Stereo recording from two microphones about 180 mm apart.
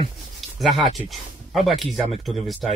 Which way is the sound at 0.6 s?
Centre (ahead or behind).